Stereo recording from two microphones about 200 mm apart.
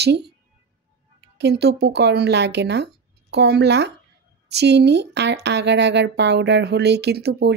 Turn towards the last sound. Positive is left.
turn(degrees=-55)  # may be behind; listen again after turning